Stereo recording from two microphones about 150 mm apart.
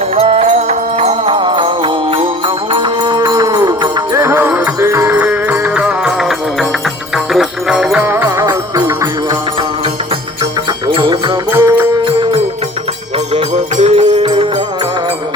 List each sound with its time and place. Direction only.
0.2 s music: 40° right (ahead or behind); by 9.4 s 20° right (ahead or behind)
10.8 s music: 30° right (ahead or behind)
11.5 s music: 15° right (ahead or behind)
12.0 s music: 35° right (ahead or behind)